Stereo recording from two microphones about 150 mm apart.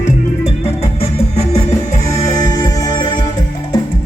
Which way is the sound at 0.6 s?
45° left (ahead or behind).